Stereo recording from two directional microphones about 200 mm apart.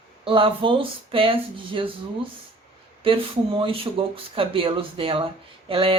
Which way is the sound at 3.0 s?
25° right (ahead or behind).